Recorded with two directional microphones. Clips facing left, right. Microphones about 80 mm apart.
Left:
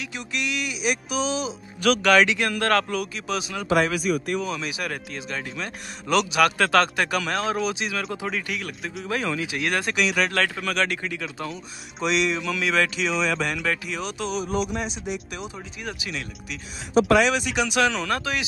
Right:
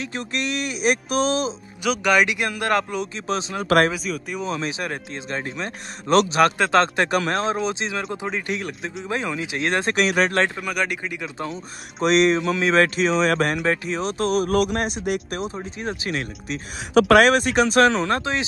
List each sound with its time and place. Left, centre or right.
0.0 s speech: right
1.8 s speech: centre
3.3 s speech: right
3.9 s speech: centre
4.4 s speech: right
6.6 s speech: right
10.6 s speech: centre
12.0 s speech: right
14.5 s speech: right
16.9 s speech: right
17.3 s speech: right